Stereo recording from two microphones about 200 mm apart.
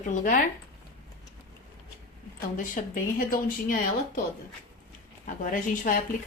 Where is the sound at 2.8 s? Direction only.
40° left (ahead or behind).